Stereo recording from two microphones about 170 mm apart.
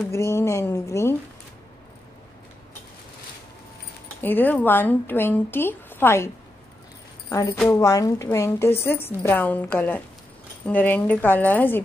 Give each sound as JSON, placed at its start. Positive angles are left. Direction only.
{"t": 0.1, "sound": "a woman's voice", "side_deg": 15}
{"t": 4.2, "sound": "a woman's voice", "side_deg": 10}
{"t": 7.7, "sound": "a woman's voice", "side_deg": 20}